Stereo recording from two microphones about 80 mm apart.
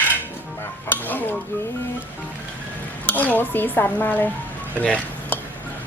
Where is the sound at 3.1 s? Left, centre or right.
Left.